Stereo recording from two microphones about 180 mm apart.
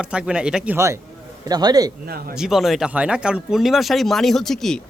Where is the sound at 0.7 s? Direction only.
15° right (ahead or behind).